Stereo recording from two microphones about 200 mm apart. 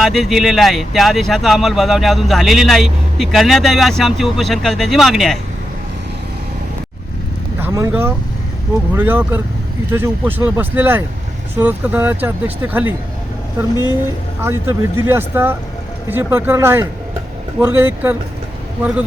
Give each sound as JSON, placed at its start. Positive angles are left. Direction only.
{"t": 0.0, "sound": "speech", "side_deg": 0}
{"t": 7.6, "sound": "speech", "side_deg": -15}
{"t": 13.7, "sound": "speech", "side_deg": 20}
{"t": 14.4, "sound": "speech", "side_deg": -10}